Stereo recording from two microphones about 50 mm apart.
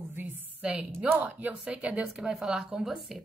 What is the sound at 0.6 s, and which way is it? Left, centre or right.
Speech, centre.